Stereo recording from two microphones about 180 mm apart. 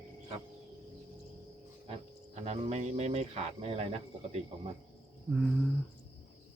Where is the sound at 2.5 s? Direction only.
35° right (ahead or behind).